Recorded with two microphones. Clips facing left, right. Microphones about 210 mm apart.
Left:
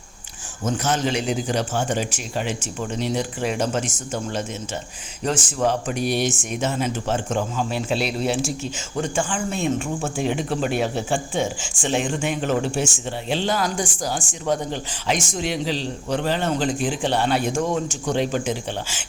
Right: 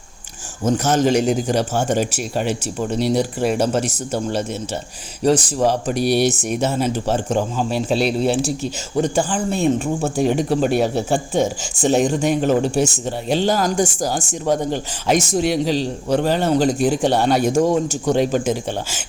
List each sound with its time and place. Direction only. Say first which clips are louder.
0.6 s speech: right 6 dB; 45° right (ahead or behind)